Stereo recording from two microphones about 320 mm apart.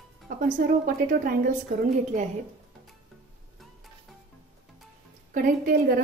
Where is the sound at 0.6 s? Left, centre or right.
Right.